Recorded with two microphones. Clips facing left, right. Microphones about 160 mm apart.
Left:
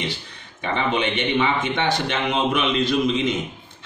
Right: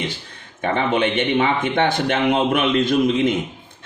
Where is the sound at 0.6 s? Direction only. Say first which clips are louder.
Right 4 dB; 50° right (ahead or behind).